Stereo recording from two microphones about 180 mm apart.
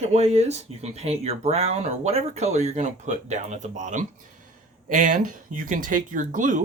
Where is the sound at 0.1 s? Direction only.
35° right (ahead or behind).